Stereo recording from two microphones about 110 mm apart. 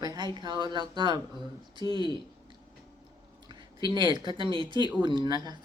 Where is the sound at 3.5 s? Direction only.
45° right (ahead or behind).